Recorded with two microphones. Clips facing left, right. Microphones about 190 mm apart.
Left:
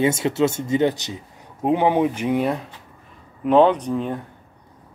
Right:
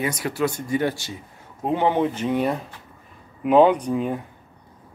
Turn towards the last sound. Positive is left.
turn(degrees=-5)  # may be behind; listen again after turning